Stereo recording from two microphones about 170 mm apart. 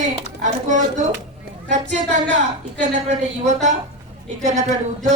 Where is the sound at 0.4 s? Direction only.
45° right (ahead or behind).